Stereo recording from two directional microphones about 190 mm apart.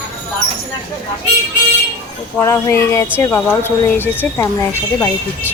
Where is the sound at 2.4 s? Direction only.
15° left (ahead or behind).